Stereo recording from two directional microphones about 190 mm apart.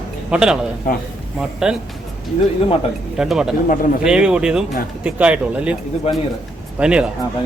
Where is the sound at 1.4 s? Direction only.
5° right (ahead or behind).